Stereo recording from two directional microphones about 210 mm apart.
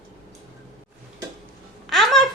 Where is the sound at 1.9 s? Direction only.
Centre (ahead or behind).